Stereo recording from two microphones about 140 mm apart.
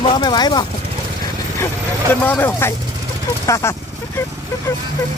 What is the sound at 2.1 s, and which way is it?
Speech, 15° left (ahead or behind).